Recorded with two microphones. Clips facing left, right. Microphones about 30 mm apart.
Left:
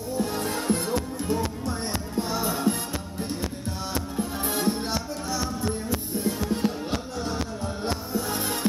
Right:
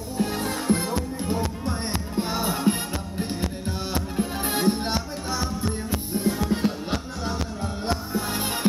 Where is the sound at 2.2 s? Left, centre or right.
Right.